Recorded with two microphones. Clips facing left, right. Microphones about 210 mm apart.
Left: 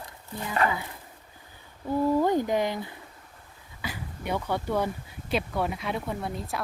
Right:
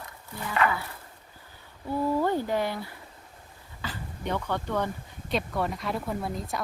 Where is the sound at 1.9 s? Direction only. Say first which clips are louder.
Left 3 dB; 15° left (ahead or behind).